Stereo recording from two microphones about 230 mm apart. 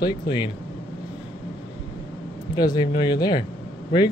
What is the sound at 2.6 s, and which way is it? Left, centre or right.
Speech, centre.